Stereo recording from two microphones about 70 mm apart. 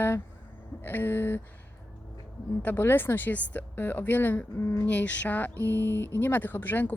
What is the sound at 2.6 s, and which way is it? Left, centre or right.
Speech, left.